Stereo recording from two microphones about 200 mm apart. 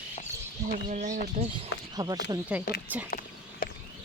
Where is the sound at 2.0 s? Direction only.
15° right (ahead or behind).